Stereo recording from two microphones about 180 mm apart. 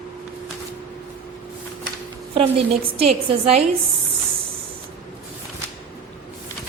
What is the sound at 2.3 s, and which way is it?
A woman's voice, 35° right (ahead or behind).